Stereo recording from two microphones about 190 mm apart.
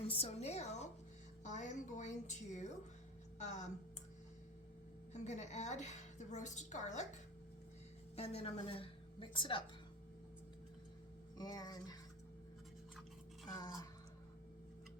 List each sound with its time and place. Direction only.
0.1 s a woman's voice: 30° left (ahead or behind)
5.1 s a woman's voice: 40° left (ahead or behind)
8.1 s a woman's voice: 30° left (ahead or behind)
11.3 s speech: 20° left (ahead or behind)
13.5 s speech: 20° left (ahead or behind)